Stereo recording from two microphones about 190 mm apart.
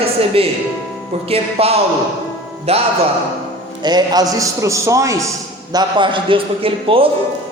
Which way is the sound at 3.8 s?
20° right (ahead or behind).